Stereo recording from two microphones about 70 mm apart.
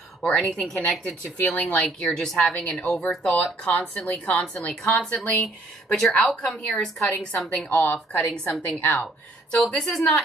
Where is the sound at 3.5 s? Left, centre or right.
Left.